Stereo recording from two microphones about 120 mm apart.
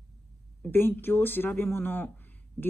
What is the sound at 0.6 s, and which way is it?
Speech, 15° left (ahead or behind).